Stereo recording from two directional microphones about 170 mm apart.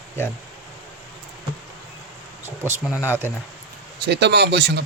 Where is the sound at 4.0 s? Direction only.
90° right.